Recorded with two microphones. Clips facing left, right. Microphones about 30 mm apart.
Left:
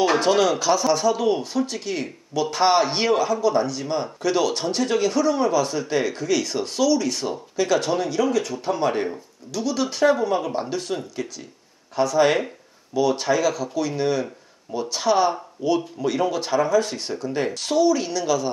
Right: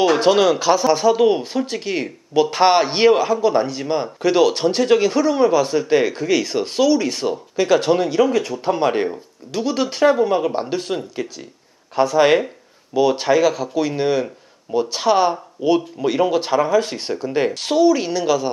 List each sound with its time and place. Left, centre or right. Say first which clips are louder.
0.2 s a man's voice: right 4 dB; centre